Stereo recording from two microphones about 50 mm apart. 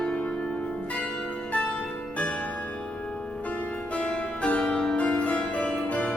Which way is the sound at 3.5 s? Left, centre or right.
Left.